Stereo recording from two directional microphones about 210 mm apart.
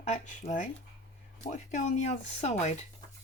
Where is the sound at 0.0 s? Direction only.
35° left (ahead or behind).